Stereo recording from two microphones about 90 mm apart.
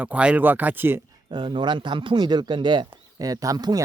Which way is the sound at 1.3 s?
60° right (ahead or behind).